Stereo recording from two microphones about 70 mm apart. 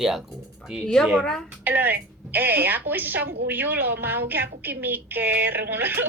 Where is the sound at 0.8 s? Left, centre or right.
Centre.